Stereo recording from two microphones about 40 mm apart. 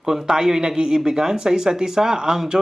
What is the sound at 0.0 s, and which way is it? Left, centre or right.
Speech, centre.